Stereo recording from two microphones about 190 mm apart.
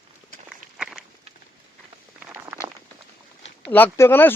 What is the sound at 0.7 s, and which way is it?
Walk, 5° right (ahead or behind).